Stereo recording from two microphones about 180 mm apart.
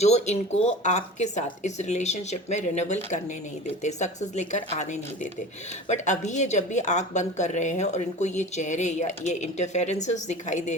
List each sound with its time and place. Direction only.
0.0 s a woman's voice: 35° left (ahead or behind)